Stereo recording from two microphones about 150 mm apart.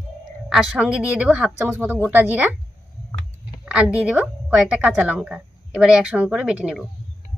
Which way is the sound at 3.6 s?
5° right (ahead or behind).